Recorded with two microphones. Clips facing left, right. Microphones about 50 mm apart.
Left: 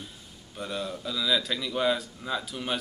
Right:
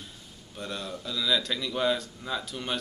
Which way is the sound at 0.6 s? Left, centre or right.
Centre.